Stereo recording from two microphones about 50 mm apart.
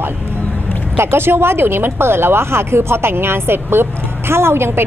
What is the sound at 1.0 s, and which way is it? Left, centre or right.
A woman's voice, right.